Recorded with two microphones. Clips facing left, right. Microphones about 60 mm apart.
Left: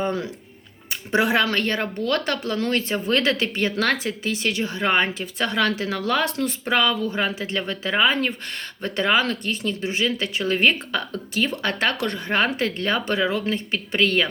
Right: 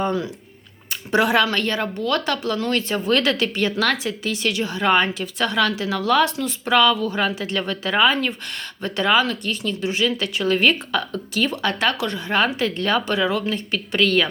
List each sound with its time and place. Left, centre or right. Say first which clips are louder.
1.1 s a woman's voice: right 2 dB; left
6.7 s a woman's voice: right 5 dB; left